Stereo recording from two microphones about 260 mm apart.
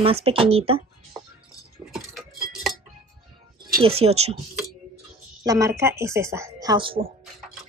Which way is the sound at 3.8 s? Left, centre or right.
Right.